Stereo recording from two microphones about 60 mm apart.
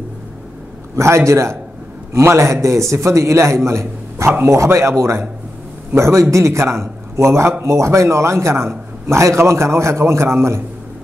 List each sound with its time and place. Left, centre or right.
0.9 s a man's voice: right